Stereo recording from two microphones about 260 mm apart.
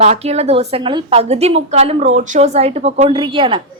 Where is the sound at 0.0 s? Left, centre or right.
Right.